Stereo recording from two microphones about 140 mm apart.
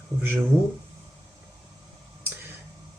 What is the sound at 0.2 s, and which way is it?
Speech, 15° right (ahead or behind).